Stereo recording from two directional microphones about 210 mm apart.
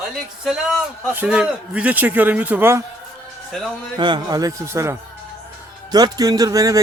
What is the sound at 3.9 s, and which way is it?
Speech, 20° right (ahead or behind).